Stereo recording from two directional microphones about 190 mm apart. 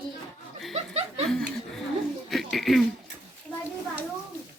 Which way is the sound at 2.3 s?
Centre (ahead or behind).